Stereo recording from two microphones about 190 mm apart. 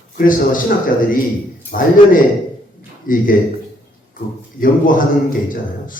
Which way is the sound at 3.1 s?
45° left (ahead or behind).